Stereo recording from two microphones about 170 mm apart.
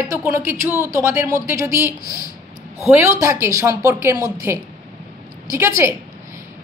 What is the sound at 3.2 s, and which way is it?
A woman's voice, 15° right (ahead or behind).